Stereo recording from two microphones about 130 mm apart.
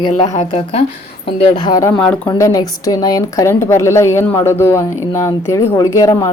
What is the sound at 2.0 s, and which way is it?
Speech, 10° left (ahead or behind).